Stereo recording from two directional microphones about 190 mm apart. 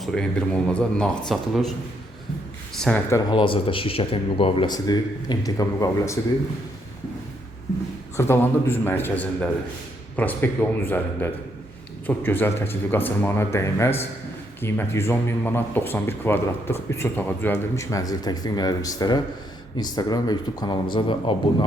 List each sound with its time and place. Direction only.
0.0 s speech: 5° left (ahead or behind)
2.8 s speech: 10° left (ahead or behind)
3.2 s speech: 25° left (ahead or behind)
8.1 s speech: 10° left (ahead or behind)